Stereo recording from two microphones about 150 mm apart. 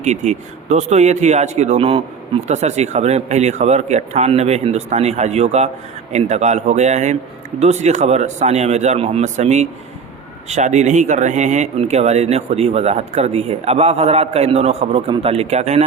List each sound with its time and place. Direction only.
0.0 s speech: 50° right (ahead or behind)